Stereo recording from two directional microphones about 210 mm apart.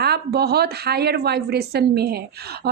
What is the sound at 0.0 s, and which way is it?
A woman's voice, 50° right (ahead or behind).